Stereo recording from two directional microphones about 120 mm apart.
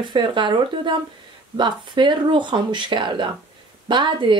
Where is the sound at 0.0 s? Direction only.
40° right (ahead or behind).